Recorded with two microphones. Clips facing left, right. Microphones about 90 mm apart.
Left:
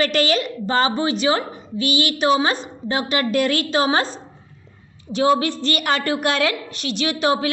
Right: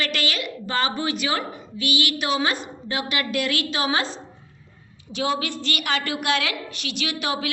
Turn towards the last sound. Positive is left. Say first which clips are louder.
# left 7 dB
turn(degrees=35)  # may be behind; listen again after turning